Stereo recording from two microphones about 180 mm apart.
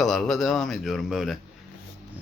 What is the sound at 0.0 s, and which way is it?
Speech, centre (ahead or behind).